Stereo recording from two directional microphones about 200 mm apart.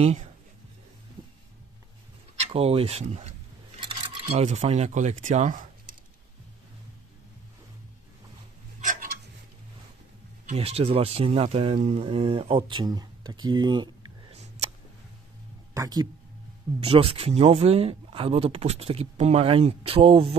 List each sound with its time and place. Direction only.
0.0 s speech: 35° right (ahead or behind)
2.3 s a sound: 30° right (ahead or behind)
3.8 s speech: 25° right (ahead or behind)
10.4 s speech: 35° right (ahead or behind)
15.7 s speech: 20° right (ahead or behind)
16.8 s speech: 30° right (ahead or behind)